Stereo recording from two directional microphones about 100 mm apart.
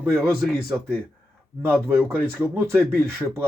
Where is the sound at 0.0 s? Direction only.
25° right (ahead or behind).